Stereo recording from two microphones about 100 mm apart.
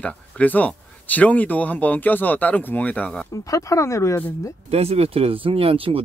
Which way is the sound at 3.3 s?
35° left (ahead or behind).